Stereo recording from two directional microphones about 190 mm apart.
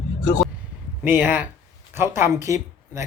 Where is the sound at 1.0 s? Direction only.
10° right (ahead or behind).